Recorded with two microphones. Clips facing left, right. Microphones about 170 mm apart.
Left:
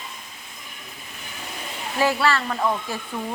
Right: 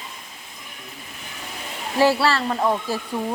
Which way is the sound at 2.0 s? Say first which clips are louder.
Right 3 dB; 35° right (ahead or behind).